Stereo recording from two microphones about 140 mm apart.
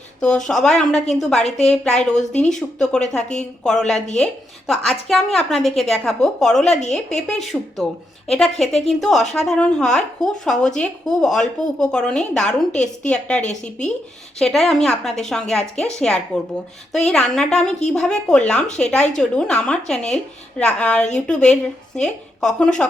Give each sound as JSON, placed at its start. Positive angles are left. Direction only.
{"t": 0.2, "sound": "a woman's voice", "side_deg": 5}
{"t": 1.5, "sound": "a woman's voice", "side_deg": 50}
{"t": 1.7, "sound": "a woman's voice", "side_deg": 5}
{"t": 3.9, "sound": "a woman's voice", "side_deg": 55}
{"t": 4.2, "sound": "a woman's voice", "side_deg": 5}
{"t": 13.4, "sound": "speech", "side_deg": 55}
{"t": 14.3, "sound": "a woman's voice", "side_deg": 5}